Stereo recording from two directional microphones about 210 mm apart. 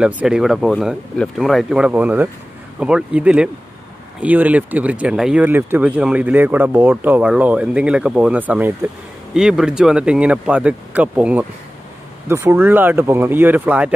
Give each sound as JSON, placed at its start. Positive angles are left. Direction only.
{"t": 0.0, "sound": "speech", "side_deg": -5}